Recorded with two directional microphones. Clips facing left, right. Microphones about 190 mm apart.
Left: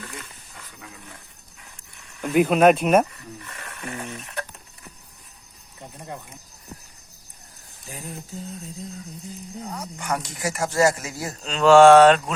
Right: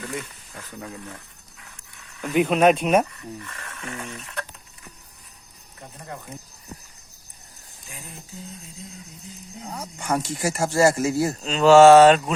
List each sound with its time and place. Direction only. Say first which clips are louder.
2.2 s speech: left 2 dB; centre (ahead or behind)
3.8 s stir: left 2 dB; 15° left (ahead or behind)
9.7 s speech: right 3 dB; 30° right (ahead or behind)
11.4 s speech: even; centre (ahead or behind)